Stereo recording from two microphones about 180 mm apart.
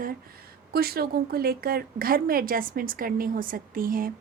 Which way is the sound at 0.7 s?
60° right (ahead or behind).